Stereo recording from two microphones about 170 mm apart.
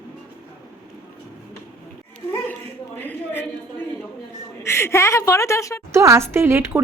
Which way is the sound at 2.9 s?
10° left (ahead or behind).